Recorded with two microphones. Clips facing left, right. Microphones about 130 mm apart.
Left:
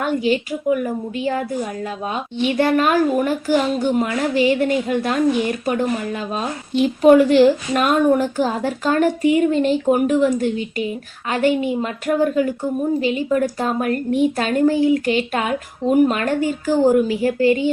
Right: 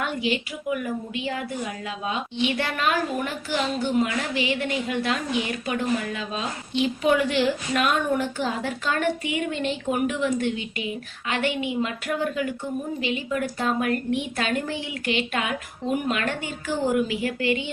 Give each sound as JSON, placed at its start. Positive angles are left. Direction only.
{"t": 0.0, "sound": "a woman's voice", "side_deg": 40}